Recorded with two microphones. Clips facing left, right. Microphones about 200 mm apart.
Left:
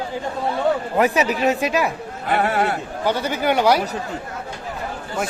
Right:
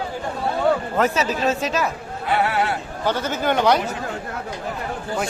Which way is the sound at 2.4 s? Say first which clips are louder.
Left 2 dB; 45° left (ahead or behind).